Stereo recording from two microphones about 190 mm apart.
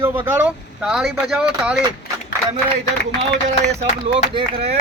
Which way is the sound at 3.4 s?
35° right (ahead or behind).